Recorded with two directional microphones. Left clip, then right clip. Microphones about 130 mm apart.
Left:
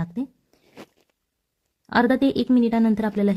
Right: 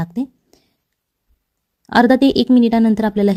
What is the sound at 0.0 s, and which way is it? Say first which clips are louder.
Zipper: right 6 dB; 35° right (ahead or behind).